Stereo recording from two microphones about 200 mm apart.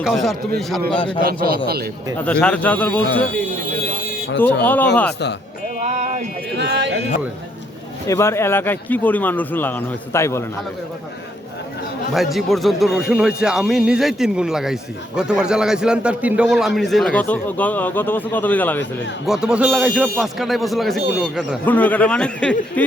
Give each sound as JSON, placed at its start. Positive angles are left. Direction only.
{"t": 0.0, "sound": "a man's voice", "side_deg": 0}
{"t": 0.9, "sound": "a man's voice", "side_deg": 25}
{"t": 1.5, "sound": "a man's voice", "side_deg": -50}
{"t": 2.2, "sound": "speech", "side_deg": 5}
{"t": 4.6, "sound": "speech", "side_deg": 10}
{"t": 5.8, "sound": "a sound", "side_deg": -35}
{"t": 6.6, "sound": "speech", "side_deg": -55}
{"t": 8.0, "sound": "speech", "side_deg": 15}
{"t": 12.1, "sound": "a man's voice", "side_deg": 0}
{"t": 19.2, "sound": "a man's voice", "side_deg": -5}